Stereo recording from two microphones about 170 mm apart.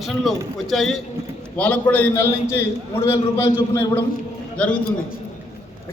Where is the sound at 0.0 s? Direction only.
Centre (ahead or behind).